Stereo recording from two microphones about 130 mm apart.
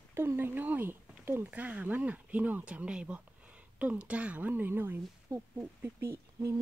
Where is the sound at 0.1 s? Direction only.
20° right (ahead or behind).